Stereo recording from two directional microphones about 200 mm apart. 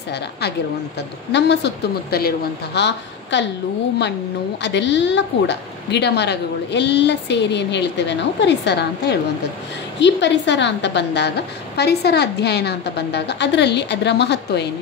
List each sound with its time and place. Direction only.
1.3 s a woman's voice: 55° left (ahead or behind)
4.6 s a woman's voice: 60° left (ahead or behind)